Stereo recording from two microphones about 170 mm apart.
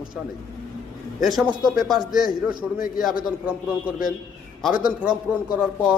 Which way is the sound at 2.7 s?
55° left (ahead or behind).